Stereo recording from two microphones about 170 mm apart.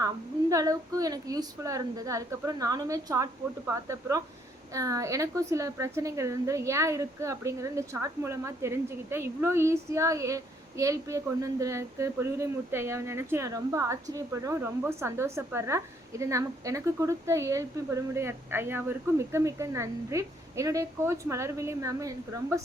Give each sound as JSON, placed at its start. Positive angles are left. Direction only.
{"t": 0.5, "sound": "a woman's voice", "side_deg": -20}